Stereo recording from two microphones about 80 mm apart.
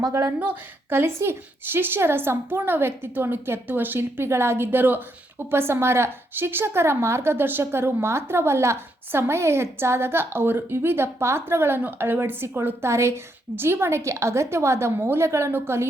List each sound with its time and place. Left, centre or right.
0.3 s a woman's voice: right